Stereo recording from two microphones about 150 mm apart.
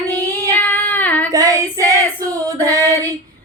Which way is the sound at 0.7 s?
10° left (ahead or behind).